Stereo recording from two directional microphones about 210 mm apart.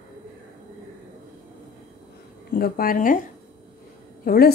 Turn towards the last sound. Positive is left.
turn(degrees=45)  # may be behind; listen again after turning